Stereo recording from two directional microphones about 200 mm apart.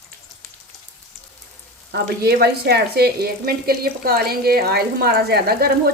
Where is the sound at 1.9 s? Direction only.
55° right (ahead or behind).